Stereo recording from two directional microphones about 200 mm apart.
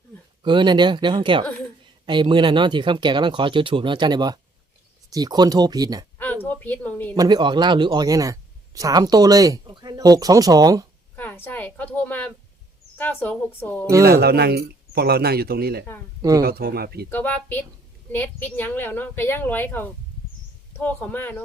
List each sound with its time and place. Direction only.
0.4 s speech: 25° right (ahead or behind)
6.1 s a sound: 10° left (ahead or behind)
7.1 s speech: 20° right (ahead or behind)
11.2 s a woman's voice: 10° left (ahead or behind)
14.0 s speech: 50° right (ahead or behind)
17.1 s a woman's voice: 10° left (ahead or behind)